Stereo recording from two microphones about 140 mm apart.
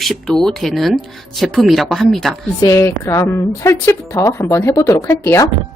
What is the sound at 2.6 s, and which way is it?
A woman's voice, 20° left (ahead or behind).